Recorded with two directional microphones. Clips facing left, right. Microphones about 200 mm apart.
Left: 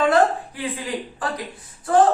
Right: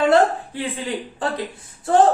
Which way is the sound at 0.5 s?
30° right (ahead or behind).